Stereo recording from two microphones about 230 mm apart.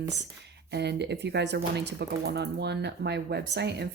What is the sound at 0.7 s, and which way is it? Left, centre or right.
Speech, right.